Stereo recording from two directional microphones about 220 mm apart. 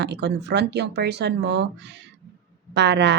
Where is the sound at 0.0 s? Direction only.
50° right (ahead or behind).